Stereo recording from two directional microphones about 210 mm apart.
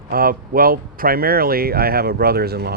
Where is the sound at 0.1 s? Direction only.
45° right (ahead or behind).